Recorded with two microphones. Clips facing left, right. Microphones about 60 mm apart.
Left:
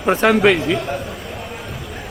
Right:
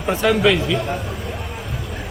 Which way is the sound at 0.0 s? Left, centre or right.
Left.